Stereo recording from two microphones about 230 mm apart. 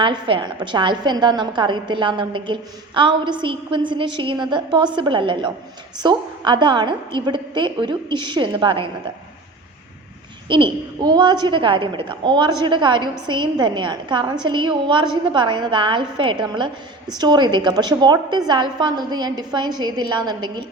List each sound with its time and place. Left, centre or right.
0.0 s a woman's voice: right
10.5 s a woman's voice: centre